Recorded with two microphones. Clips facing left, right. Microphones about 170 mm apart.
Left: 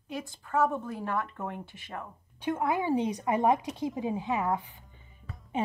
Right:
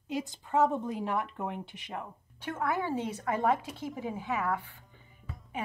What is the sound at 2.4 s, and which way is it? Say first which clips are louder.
A woman's voice: left 3 dB; 15° left (ahead or behind).